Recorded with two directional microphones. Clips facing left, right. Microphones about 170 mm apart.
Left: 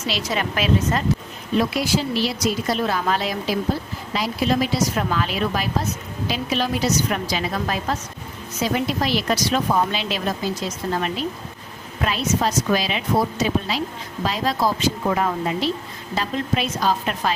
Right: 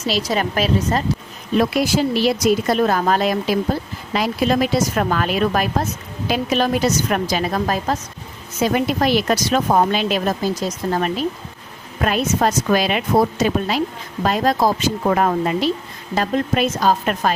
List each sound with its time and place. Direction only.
0.0 s speech: 35° right (ahead or behind)
1.7 s speech: 55° right (ahead or behind)
8.6 s speech: 55° right (ahead or behind)